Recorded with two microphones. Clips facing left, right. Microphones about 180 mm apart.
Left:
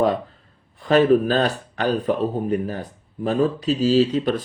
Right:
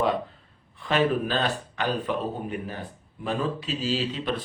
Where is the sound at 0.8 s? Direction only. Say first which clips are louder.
Left 8 dB; 40° left (ahead or behind).